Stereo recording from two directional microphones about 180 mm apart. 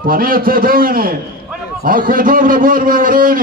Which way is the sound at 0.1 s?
55° right (ahead or behind).